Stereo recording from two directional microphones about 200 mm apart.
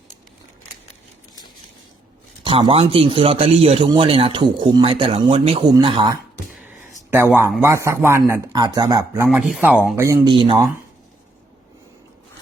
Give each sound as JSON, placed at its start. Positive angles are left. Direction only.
{"t": 2.4, "sound": "a man's voice", "side_deg": -25}
{"t": 7.1, "sound": "speech", "side_deg": -10}
{"t": 10.2, "sound": "a man's voice", "side_deg": -25}